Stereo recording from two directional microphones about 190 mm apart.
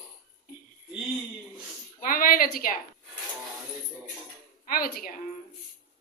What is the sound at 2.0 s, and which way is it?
Speech, 45° left (ahead or behind).